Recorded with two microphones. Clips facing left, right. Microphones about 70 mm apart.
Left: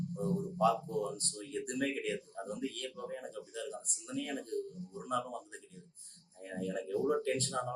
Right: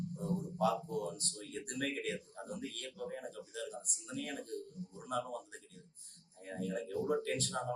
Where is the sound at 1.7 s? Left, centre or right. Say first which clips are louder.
Left 3 dB; left.